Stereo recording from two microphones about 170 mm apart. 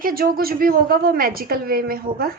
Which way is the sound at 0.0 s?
60° right (ahead or behind).